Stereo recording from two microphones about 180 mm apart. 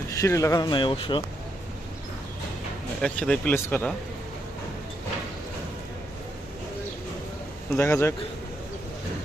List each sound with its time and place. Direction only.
0.1 s speech: 15° left (ahead or behind)
3.0 s speech: 5° left (ahead or behind)
7.8 s speech: 15° left (ahead or behind)